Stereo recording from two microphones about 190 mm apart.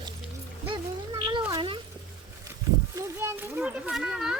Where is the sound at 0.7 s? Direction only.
25° right (ahead or behind).